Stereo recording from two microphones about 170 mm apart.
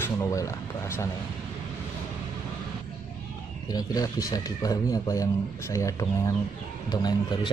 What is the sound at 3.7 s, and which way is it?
Speech, 20° left (ahead or behind).